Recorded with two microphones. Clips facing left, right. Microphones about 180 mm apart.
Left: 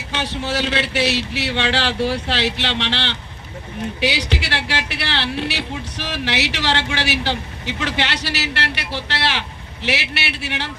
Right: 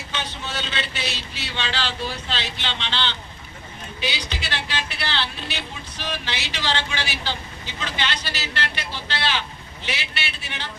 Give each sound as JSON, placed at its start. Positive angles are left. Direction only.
{"t": 0.1, "sound": "a woman's voice", "side_deg": 70}